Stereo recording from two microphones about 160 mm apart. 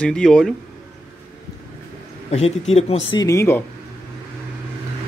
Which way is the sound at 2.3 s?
40° left (ahead or behind).